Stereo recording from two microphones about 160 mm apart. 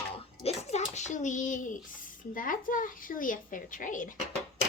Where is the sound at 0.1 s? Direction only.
40° left (ahead or behind).